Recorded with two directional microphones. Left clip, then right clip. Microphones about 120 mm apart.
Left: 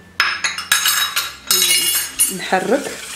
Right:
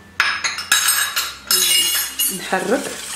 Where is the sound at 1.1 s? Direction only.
15° left (ahead or behind).